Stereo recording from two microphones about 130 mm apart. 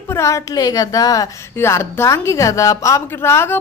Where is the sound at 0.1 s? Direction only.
25° left (ahead or behind).